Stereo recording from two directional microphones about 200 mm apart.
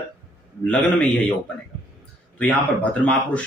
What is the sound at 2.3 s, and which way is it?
Speech, 5° left (ahead or behind).